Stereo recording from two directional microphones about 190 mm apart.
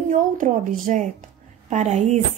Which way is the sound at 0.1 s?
45° right (ahead or behind).